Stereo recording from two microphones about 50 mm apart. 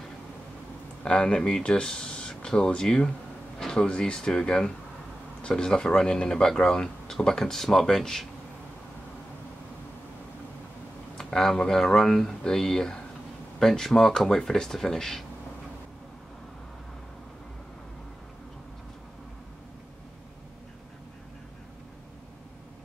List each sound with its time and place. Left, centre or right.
1.0 s speech: centre
11.1 s speech: centre